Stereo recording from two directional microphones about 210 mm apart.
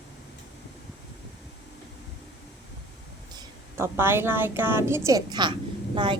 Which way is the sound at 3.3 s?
10° right (ahead or behind).